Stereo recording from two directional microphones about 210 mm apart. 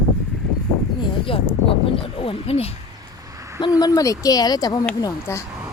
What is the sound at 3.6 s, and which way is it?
Speech, 15° left (ahead or behind).